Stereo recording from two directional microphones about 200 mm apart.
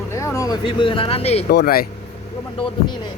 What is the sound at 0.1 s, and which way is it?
Speech, 15° left (ahead or behind).